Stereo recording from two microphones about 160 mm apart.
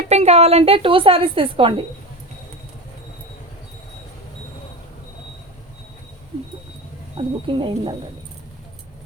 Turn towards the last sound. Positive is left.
turn(degrees=-35)  # may be behind; listen again after turning